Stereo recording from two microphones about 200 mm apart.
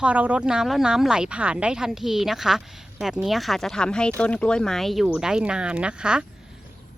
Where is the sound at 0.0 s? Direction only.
5° right (ahead or behind).